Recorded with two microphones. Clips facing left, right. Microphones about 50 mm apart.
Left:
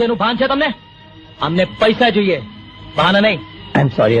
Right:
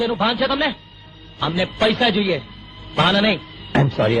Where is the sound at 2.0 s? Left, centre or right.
Left.